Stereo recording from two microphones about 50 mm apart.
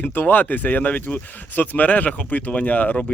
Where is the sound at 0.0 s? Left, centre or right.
Left.